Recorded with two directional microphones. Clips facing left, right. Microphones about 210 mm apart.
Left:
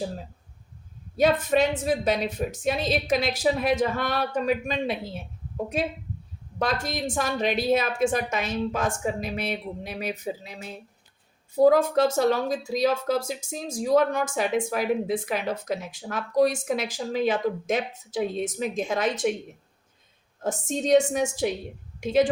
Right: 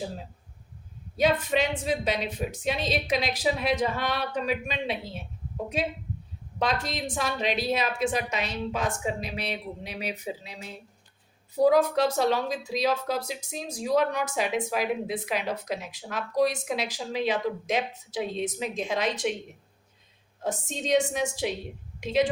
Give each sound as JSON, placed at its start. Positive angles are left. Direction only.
{"t": 1.1, "sound": "speech", "side_deg": 45}
{"t": 6.6, "sound": "speech", "side_deg": 45}
{"t": 20.4, "sound": "speech", "side_deg": 45}